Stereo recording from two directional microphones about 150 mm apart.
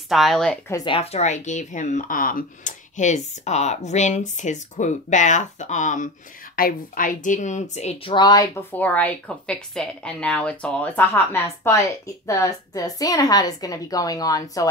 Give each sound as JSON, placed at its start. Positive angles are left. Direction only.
{"t": 0.1, "sound": "speech", "side_deg": 0}
{"t": 0.8, "sound": "speech", "side_deg": 40}
{"t": 6.5, "sound": "a woman's voice", "side_deg": 70}
{"t": 8.1, "sound": "speech", "side_deg": 25}
{"t": 8.7, "sound": "speech", "side_deg": 10}